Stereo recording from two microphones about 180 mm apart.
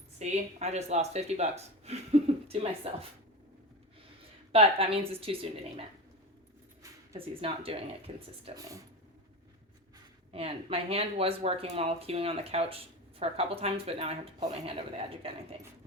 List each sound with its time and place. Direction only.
0.2 s speech: 40° right (ahead or behind)
4.5 s speech: 30° right (ahead or behind)
7.4 s speech: 30° right (ahead or behind)
8.5 s speech: 20° right (ahead or behind)
10.3 s speech: 35° right (ahead or behind)